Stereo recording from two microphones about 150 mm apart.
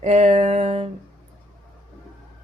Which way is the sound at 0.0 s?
45° right (ahead or behind).